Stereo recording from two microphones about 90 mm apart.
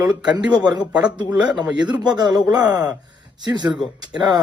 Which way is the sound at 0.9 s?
10° right (ahead or behind).